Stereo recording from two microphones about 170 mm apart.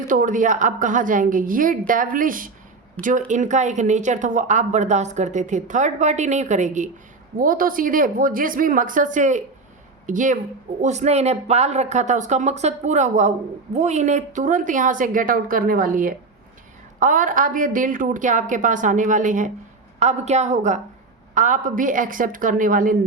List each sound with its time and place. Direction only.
0.1 s a woman's voice: 50° right (ahead or behind)
7.3 s a woman's voice: 55° right (ahead or behind)